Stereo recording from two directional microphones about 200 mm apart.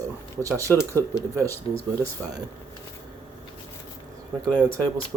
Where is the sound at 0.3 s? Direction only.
15° right (ahead or behind).